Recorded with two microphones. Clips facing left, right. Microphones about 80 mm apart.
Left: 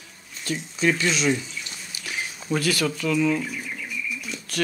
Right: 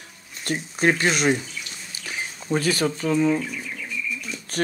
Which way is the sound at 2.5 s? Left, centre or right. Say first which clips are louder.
Right 2 dB; right.